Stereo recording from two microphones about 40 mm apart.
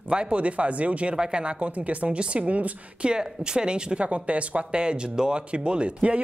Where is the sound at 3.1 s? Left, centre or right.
Right.